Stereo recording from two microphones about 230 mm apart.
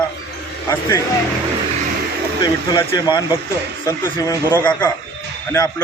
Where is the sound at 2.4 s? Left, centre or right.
Left.